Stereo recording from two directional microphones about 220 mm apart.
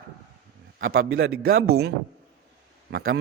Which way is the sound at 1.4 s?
45° right (ahead or behind).